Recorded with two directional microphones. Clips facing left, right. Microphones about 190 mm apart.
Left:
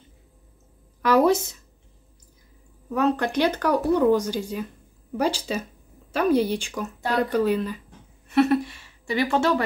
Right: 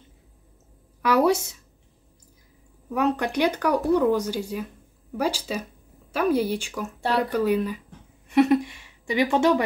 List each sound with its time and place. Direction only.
1.0 s speech: 10° right (ahead or behind)
2.9 s a woman's voice: 15° right (ahead or behind)